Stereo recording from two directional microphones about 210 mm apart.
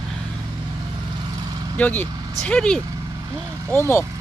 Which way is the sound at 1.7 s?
10° left (ahead or behind).